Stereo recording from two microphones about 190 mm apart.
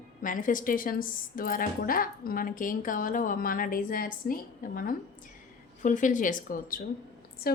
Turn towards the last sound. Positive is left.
turn(degrees=50)  # may be behind; listen again after turning